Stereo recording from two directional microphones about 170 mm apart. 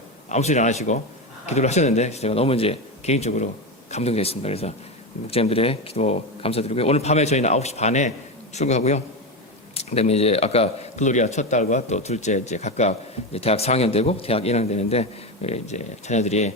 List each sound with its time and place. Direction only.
0.3 s a man's voice: 40° left (ahead or behind)